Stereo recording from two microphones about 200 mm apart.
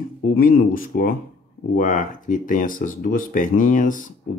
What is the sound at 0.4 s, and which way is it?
Speech, 45° left (ahead or behind).